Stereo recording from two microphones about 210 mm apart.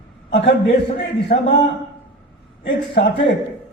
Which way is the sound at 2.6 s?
55° left (ahead or behind).